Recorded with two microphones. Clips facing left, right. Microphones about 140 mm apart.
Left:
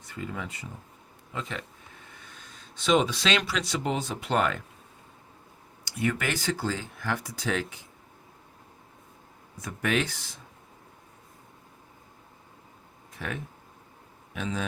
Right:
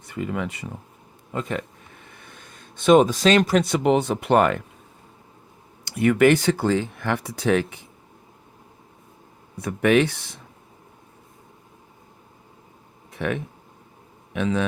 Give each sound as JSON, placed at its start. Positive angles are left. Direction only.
{"t": 0.0, "sound": "speech", "side_deg": -65}
{"t": 1.3, "sound": "speech", "side_deg": -50}
{"t": 5.8, "sound": "speech", "side_deg": -60}
{"t": 9.6, "sound": "speech", "side_deg": -65}
{"t": 13.1, "sound": "a man's voice", "side_deg": -65}